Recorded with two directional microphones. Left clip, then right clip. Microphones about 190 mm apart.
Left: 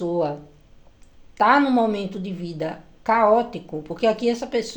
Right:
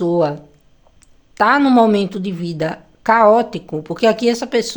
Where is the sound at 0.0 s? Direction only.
35° right (ahead or behind).